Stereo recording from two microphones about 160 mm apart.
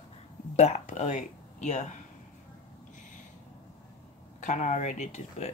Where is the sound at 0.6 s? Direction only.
45° left (ahead or behind).